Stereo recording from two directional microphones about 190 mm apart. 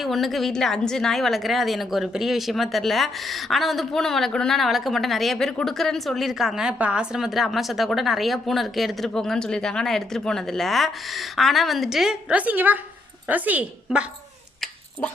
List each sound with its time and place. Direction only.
0.0 s a woman's voice: centre (ahead or behind)